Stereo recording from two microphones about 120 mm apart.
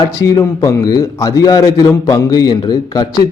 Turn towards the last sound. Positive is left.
turn(degrees=35)  # may be behind; listen again after turning